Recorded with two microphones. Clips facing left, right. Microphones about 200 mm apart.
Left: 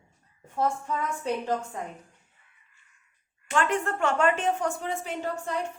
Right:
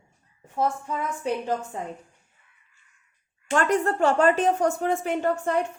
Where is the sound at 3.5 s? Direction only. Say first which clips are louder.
Right 4 dB; 40° right (ahead or behind).